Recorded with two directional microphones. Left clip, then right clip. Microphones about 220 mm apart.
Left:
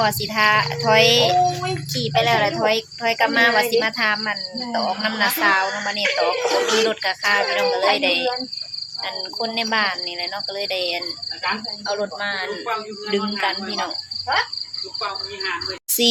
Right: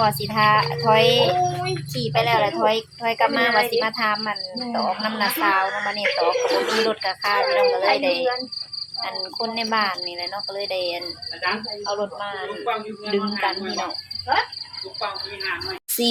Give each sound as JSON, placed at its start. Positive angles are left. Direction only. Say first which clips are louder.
{"t": 0.0, "sound": "a woman's voice", "louder": "left 1 dB", "side_deg": 5}
{"t": 9.4, "sound": "a woman's voice", "louder": "left 2 dB", "side_deg": 5}
{"t": 11.9, "sound": "speech", "louder": "left 3 dB", "side_deg": 15}
{"t": 13.1, "sound": "a woman's voice", "louder": "left 1 dB", "side_deg": 5}
{"t": 16.0, "sound": "a woman's voice", "louder": "left 4 dB", "side_deg": 5}